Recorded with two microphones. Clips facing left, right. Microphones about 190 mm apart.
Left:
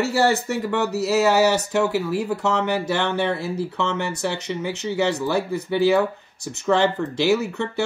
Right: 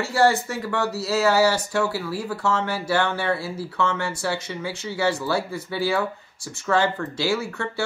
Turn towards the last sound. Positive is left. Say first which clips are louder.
# left 4 dB
turn(degrees=20)  # may be behind; listen again after turning